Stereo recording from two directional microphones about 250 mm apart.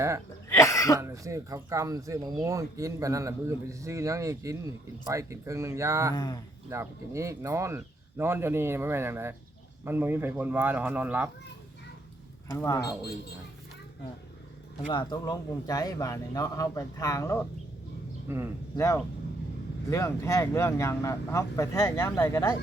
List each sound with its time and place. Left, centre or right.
0.4 s cough: centre
0.9 s speech: centre
6.1 s speech: centre
6.7 s speech: centre
12.5 s speech: centre
14.9 s speech: centre
18.3 s speech: centre
18.8 s speech: centre